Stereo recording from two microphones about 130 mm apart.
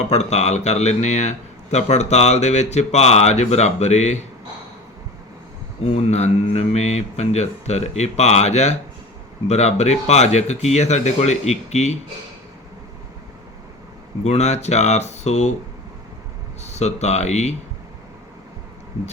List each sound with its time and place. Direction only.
0.1 s speech: 60° left (ahead or behind)
5.8 s speech: 55° left (ahead or behind)
14.3 s speech: 60° left (ahead or behind)
16.6 s speech: 60° left (ahead or behind)